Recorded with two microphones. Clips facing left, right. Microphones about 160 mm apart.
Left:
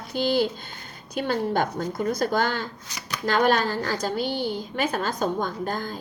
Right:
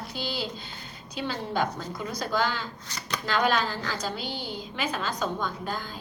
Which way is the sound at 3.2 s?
45° left (ahead or behind).